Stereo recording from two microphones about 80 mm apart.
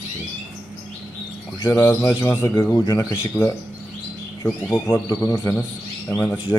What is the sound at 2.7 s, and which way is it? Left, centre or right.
Speech, left.